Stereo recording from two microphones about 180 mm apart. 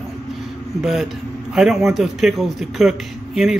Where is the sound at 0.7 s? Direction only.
Centre (ahead or behind).